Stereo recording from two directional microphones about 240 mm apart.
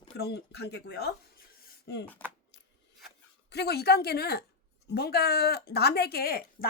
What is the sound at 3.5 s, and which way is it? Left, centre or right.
Speech, left.